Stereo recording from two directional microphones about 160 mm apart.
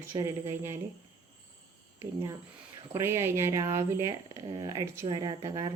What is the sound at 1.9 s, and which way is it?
Speech, 20° right (ahead or behind).